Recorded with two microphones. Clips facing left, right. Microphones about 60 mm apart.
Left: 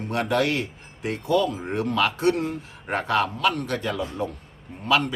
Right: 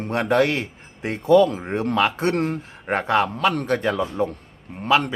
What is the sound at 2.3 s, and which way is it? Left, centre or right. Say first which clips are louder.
Speech: right 4 dB; right.